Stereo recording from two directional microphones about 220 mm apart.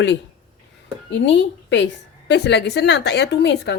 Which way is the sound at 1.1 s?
55° left (ahead or behind).